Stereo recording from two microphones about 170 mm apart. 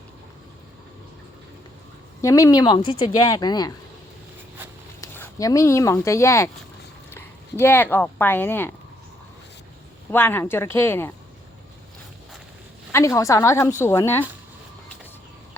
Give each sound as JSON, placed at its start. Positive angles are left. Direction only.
{"t": 2.2, "sound": "a woman's voice", "side_deg": 20}
{"t": 4.9, "sound": "speech", "side_deg": 15}
{"t": 7.6, "sound": "a woman's voice", "side_deg": 10}
{"t": 10.1, "sound": "a woman's voice", "side_deg": 10}
{"t": 12.9, "sound": "a woman's voice", "side_deg": 20}